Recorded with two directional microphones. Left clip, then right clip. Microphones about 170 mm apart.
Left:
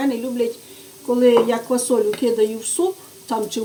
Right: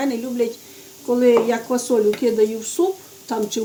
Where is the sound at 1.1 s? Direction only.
15° right (ahead or behind).